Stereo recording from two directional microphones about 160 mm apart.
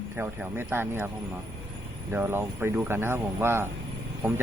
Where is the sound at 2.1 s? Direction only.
15° right (ahead or behind).